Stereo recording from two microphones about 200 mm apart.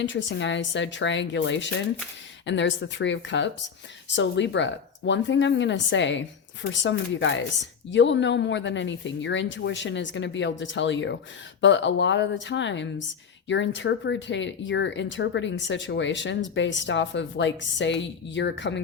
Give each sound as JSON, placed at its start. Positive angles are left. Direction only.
{"t": 0.0, "sound": "speech", "side_deg": 65}